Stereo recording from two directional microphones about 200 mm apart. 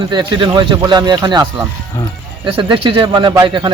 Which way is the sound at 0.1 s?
20° right (ahead or behind).